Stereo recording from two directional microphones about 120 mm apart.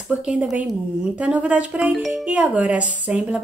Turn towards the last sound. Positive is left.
turn(degrees=-10)  # may be behind; listen again after turning